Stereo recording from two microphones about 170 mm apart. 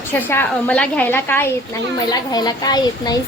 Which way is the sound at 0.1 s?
10° left (ahead or behind).